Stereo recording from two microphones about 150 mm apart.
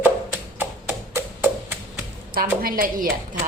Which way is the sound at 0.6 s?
15° right (ahead or behind).